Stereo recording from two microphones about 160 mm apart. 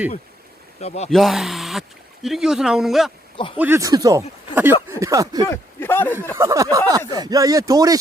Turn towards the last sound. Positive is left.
turn(degrees=-20)  # may be behind; listen again after turning